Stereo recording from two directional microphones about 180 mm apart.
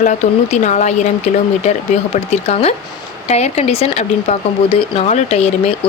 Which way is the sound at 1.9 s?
35° left (ahead or behind).